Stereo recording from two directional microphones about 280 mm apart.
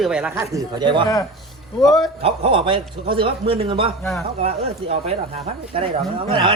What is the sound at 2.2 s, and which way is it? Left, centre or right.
Speech, right.